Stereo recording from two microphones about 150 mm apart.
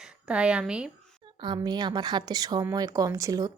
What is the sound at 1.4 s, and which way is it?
Speech, 30° right (ahead or behind).